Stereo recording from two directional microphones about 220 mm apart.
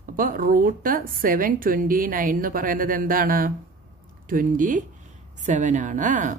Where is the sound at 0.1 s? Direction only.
40° right (ahead or behind).